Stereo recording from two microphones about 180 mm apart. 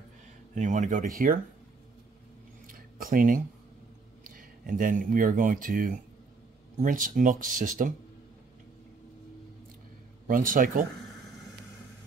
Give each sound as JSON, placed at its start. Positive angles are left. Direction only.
{"t": 0.6, "sound": "speech", "side_deg": -45}
{"t": 2.6, "sound": "a sound", "side_deg": -50}
{"t": 4.2, "sound": "speech", "side_deg": -50}
{"t": 10.2, "sound": "speech", "side_deg": -50}